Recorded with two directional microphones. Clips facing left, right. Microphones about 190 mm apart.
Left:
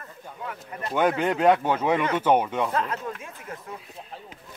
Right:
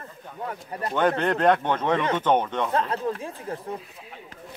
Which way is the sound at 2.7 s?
30° right (ahead or behind).